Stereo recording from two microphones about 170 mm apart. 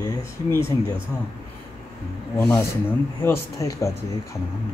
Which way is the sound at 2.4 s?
10° left (ahead or behind).